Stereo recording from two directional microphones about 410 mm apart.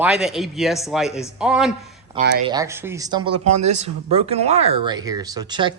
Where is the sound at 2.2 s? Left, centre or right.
Centre.